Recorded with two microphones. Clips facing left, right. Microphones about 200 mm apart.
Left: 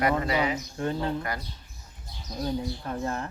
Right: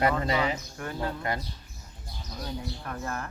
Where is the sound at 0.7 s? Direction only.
25° left (ahead or behind).